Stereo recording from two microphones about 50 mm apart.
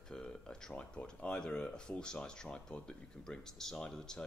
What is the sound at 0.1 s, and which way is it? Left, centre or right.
Speech, centre.